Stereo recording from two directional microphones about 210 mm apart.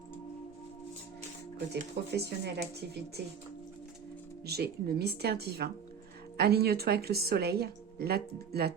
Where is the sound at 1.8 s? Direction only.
50° right (ahead or behind).